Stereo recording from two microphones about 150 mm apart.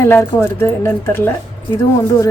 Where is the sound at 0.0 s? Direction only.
15° left (ahead or behind).